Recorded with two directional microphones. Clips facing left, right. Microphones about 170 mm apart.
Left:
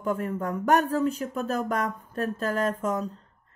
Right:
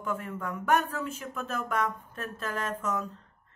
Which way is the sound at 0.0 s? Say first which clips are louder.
Left 6 dB; 40° left (ahead or behind).